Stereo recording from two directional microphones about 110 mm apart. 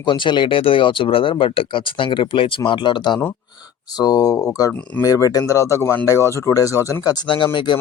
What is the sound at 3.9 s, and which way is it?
Speech, 35° left (ahead or behind).